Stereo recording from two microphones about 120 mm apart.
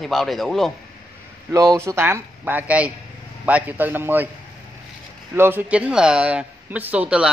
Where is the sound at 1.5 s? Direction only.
25° right (ahead or behind).